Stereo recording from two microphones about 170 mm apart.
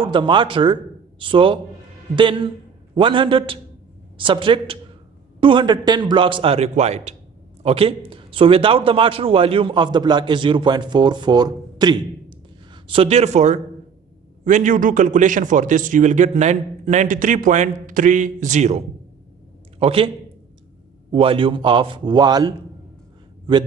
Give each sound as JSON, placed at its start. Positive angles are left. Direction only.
{"t": 0.0, "sound": "a man's voice", "side_deg": -30}
{"t": 21.1, "sound": "a man's voice", "side_deg": -30}